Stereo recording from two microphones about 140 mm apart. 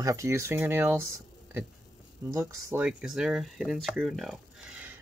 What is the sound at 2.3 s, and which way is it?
Speech, 15° right (ahead or behind).